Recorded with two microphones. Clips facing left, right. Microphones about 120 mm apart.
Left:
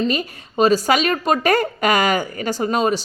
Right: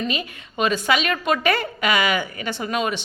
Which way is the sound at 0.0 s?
40° left (ahead or behind).